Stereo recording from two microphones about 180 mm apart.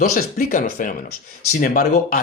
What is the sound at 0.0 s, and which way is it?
Speech, 55° left (ahead or behind).